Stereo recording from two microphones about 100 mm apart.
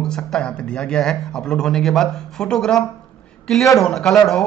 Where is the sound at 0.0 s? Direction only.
5° left (ahead or behind).